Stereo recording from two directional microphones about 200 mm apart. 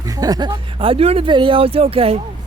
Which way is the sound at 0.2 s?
20° right (ahead or behind).